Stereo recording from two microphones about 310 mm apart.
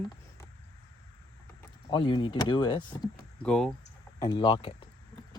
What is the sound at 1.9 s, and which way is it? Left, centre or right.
Speech, centre.